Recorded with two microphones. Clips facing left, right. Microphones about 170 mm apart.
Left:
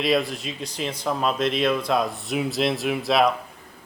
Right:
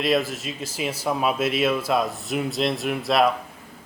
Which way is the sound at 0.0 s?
Centre (ahead or behind).